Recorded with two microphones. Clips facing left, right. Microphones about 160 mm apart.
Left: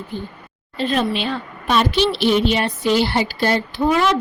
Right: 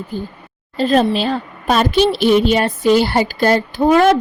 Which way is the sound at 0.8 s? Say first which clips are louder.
Right 6 dB; 40° right (ahead or behind).